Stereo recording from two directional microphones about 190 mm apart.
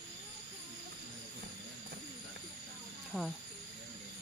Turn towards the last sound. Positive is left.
turn(degrees=0)  # may be behind; listen again after turning